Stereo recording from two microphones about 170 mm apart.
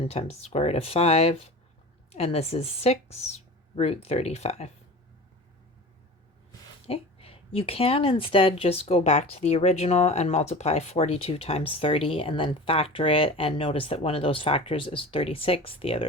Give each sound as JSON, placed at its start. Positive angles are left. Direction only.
{"t": 0.0, "sound": "speech", "side_deg": 40}
{"t": 6.8, "sound": "speech", "side_deg": 35}